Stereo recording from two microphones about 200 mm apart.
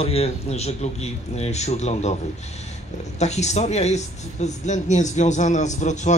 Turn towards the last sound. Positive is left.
turn(degrees=35)  # may be behind; listen again after turning